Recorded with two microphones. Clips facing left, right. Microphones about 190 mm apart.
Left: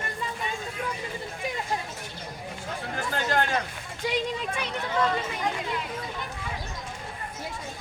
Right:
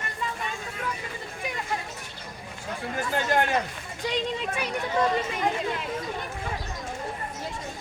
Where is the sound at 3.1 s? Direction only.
15° right (ahead or behind).